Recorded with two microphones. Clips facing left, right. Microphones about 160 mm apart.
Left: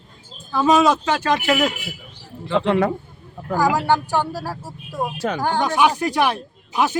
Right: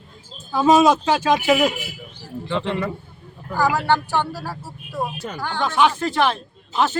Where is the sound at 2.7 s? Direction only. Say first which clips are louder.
Left 9 dB; 90° left.